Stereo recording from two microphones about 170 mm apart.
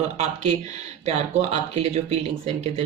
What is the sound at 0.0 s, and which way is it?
Speech, 40° right (ahead or behind).